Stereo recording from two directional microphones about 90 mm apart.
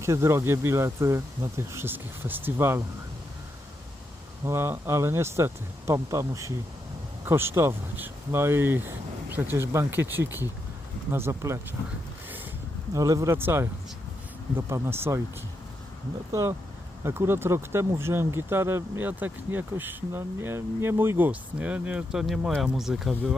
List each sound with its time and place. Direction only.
0.0 s speech: 30° right (ahead or behind)
4.4 s speech: 30° right (ahead or behind)
12.9 s speech: 35° right (ahead or behind)
16.3 s speech: 30° right (ahead or behind); by 23.1 s 5° right (ahead or behind)